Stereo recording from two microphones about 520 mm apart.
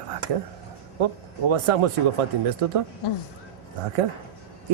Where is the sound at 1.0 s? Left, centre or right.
Right.